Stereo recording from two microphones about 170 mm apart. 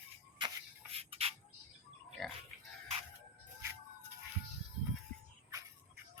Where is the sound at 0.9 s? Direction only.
35° right (ahead or behind).